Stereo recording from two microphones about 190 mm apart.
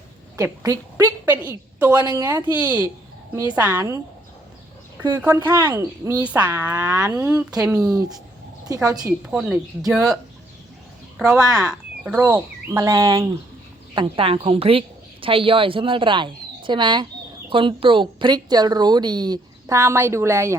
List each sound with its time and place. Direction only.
0.3 s a woman's voice: 15° right (ahead or behind)
5.1 s a woman's voice: 15° right (ahead or behind)
7.5 s speech: 5° right (ahead or behind)
7.9 s a woman's voice: 20° right (ahead or behind)
9.2 s speech: centre (ahead or behind)
11.6 s speech: 5° right (ahead or behind)
13.9 s a woman's voice: 25° right (ahead or behind)